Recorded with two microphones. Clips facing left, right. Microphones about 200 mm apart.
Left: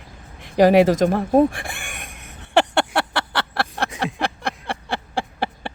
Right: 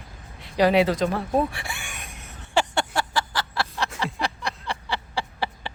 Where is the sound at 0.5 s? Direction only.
50° left (ahead or behind).